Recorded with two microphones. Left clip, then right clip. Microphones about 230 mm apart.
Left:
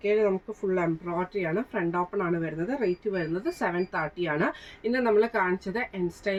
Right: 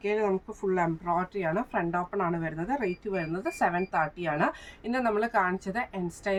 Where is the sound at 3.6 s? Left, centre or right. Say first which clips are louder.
Right 4 dB; centre.